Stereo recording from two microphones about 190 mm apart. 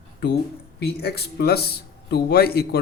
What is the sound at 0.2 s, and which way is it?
Speech, 60° left (ahead or behind).